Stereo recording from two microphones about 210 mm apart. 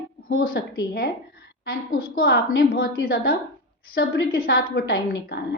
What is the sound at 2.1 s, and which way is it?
A woman's voice, 50° left (ahead or behind).